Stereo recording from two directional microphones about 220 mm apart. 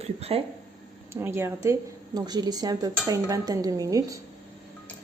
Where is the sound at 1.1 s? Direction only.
10° right (ahead or behind).